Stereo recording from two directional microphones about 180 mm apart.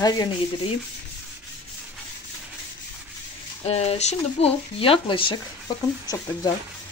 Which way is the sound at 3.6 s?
35° left (ahead or behind).